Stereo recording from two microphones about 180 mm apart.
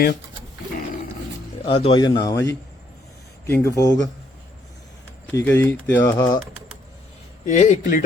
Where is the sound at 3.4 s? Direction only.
15° left (ahead or behind).